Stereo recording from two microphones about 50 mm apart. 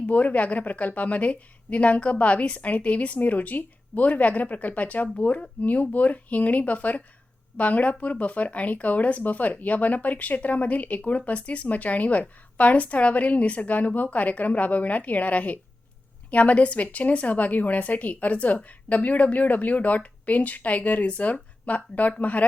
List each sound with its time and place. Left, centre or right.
0.1 s speech: left